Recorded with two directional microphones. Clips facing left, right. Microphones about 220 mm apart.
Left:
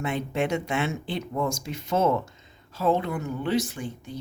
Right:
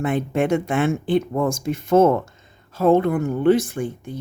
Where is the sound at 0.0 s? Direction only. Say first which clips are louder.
Right 6 dB; 50° right (ahead or behind).